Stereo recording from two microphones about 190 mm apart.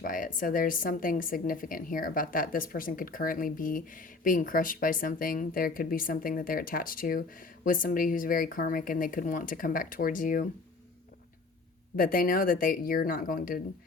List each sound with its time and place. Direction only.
0.0 s a woman's voice: 45° left (ahead or behind)
11.9 s a woman's voice: 50° left (ahead or behind)